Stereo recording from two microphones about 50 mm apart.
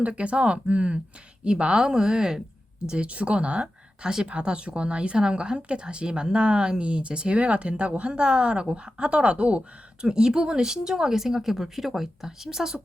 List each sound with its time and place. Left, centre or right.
0.0 s speech: right